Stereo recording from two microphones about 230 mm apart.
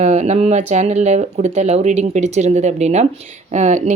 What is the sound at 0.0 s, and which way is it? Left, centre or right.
Speech, right.